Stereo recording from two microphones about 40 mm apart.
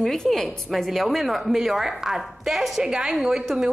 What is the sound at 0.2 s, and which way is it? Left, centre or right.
A woman's voice, centre.